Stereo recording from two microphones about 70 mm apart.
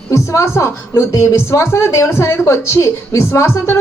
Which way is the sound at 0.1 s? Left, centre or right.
Left.